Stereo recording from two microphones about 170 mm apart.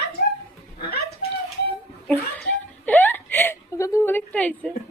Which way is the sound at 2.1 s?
10° left (ahead or behind).